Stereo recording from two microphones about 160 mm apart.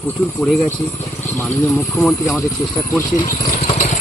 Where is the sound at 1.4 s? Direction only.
15° left (ahead or behind).